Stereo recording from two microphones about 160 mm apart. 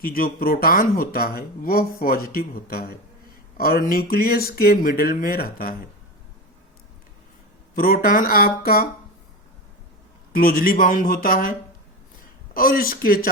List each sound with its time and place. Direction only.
0.0 s speech: 65° left (ahead or behind)
7.8 s speech: 65° left (ahead or behind)
10.3 s speech: 65° left (ahead or behind)
12.5 s speech: 65° left (ahead or behind)